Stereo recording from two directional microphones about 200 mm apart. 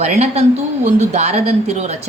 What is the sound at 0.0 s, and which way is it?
A woman's voice, 30° right (ahead or behind).